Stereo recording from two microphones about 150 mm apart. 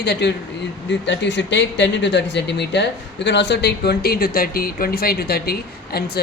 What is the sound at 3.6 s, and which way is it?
A man's voice, 90° left.